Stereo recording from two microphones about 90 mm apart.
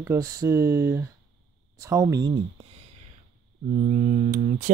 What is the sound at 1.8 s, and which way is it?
Speech, 40° right (ahead or behind).